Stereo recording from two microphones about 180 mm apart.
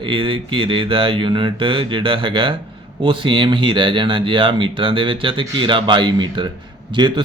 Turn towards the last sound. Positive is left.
turn(degrees=-25)  # may be behind; listen again after turning